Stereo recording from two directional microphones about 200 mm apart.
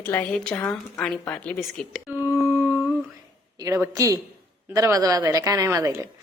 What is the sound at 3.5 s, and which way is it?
A woman's voice, 15° right (ahead or behind).